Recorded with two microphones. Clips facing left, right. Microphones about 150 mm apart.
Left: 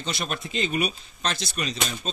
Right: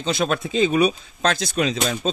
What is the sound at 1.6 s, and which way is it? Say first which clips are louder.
Speech: right 11 dB; 90° right.